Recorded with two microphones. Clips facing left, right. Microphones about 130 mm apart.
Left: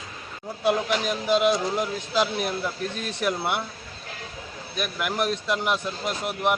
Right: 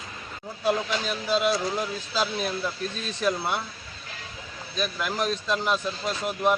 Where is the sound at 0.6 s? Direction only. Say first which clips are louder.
Left 2 dB; 15° left (ahead or behind).